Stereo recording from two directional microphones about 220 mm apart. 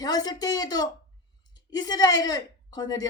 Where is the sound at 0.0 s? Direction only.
15° left (ahead or behind).